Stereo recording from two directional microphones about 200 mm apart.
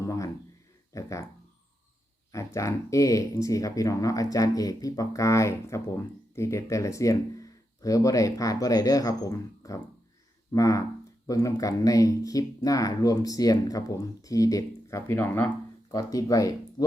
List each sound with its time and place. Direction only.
0.0 s a sound: 15° left (ahead or behind)
0.9 s speech: 15° left (ahead or behind)
2.3 s speech: 15° left (ahead or behind)